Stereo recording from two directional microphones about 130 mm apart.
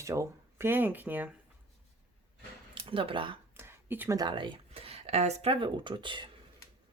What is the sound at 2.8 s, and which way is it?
Speech, 45° right (ahead or behind).